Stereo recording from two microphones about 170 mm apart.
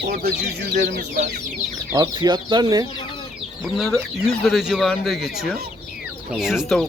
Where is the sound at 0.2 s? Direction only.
75° right (ahead or behind).